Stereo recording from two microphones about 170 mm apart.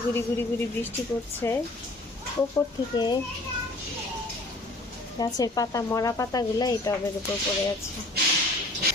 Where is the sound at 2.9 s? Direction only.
25° left (ahead or behind).